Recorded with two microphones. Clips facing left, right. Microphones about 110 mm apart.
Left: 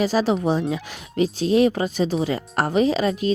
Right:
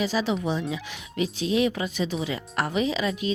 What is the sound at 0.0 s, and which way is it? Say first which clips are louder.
Speech: left 6 dB; 40° left (ahead or behind).